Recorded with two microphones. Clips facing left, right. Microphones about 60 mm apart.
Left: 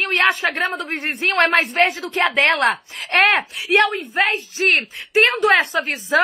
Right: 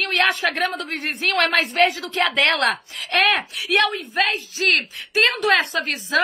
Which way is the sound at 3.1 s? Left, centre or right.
Left.